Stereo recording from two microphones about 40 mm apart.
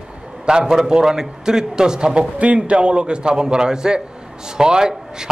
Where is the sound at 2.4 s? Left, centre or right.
Right.